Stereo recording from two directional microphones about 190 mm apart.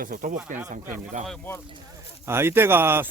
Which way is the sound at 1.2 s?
5° left (ahead or behind).